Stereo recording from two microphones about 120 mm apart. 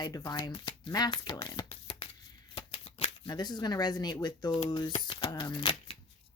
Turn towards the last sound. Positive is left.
turn(degrees=45)  # may be behind; listen again after turning